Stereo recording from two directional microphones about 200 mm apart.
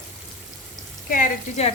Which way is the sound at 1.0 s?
40° left (ahead or behind).